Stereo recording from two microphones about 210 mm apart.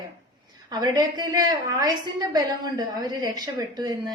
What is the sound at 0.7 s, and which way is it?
A woman's voice, 15° right (ahead or behind).